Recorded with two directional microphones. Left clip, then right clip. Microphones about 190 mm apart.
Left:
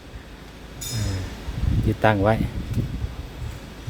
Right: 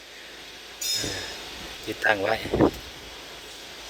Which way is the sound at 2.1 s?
15° left (ahead or behind).